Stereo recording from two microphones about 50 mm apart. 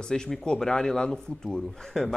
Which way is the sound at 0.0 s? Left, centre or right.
Centre.